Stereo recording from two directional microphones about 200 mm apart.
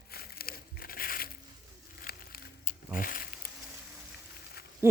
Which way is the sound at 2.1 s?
50° left (ahead or behind).